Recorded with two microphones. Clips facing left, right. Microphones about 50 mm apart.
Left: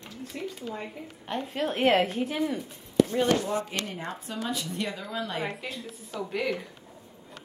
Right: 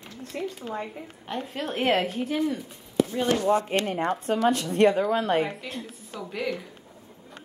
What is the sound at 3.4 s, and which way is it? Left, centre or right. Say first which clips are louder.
Speech: right 8 dB; right.